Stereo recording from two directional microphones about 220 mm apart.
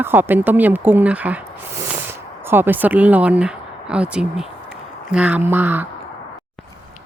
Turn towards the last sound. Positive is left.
turn(degrees=-10)  # may be behind; listen again after turning